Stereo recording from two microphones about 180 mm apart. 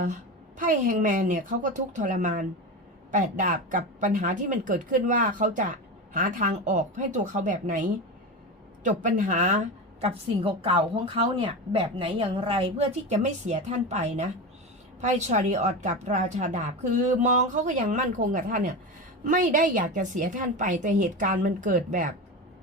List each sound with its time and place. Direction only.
0.0 s a woman's voice: 45° right (ahead or behind)